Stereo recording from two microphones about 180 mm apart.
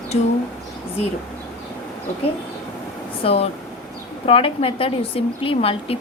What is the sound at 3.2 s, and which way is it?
A woman's voice, 35° left (ahead or behind).